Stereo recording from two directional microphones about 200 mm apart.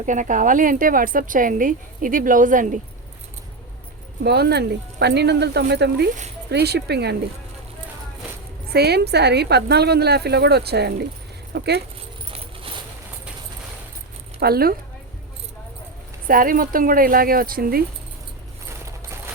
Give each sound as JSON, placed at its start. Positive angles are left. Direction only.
{"t": 0.0, "sound": "speech", "side_deg": -40}
{"t": 4.2, "sound": "a woman's voice", "side_deg": -55}
{"t": 8.7, "sound": "a woman's voice", "side_deg": -55}
{"t": 14.3, "sound": "a woman's voice", "side_deg": -50}
{"t": 16.2, "sound": "speech", "side_deg": -45}